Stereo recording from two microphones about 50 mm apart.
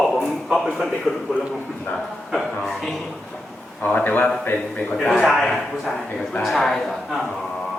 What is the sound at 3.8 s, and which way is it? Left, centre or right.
Speech, left.